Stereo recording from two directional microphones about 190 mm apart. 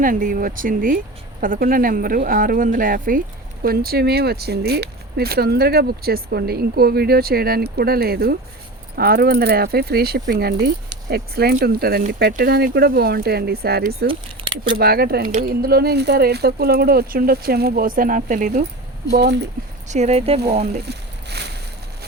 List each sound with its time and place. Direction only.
0.0 s speech: 45° right (ahead or behind)
14.4 s keys jangling: 30° right (ahead or behind)
14.8 s speech: 55° right (ahead or behind)
19.1 s speech: 60° right (ahead or behind)
19.9 s speech: 35° right (ahead or behind)
20.8 s a sound: 60° right (ahead or behind)